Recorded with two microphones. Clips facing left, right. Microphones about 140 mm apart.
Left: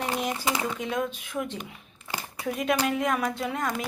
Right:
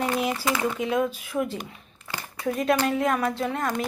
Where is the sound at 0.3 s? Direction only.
20° left (ahead or behind).